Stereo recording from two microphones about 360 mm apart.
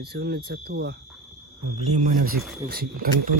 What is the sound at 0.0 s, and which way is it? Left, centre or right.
Speech, right.